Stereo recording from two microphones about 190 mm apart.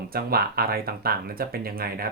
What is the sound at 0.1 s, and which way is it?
Speech, 55° right (ahead or behind).